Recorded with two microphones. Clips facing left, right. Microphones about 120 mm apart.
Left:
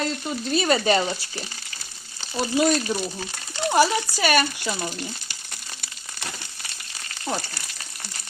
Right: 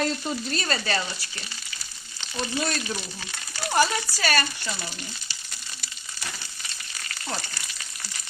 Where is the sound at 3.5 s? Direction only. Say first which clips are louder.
Left 4 dB; 20° left (ahead or behind).